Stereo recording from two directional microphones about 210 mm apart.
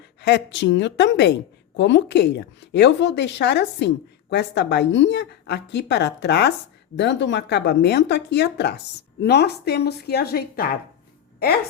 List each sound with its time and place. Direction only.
0.0 s a woman's voice: 55° left (ahead or behind)